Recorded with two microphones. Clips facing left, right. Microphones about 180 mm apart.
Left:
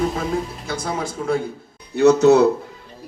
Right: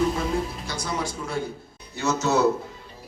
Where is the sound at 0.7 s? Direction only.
50° left (ahead or behind).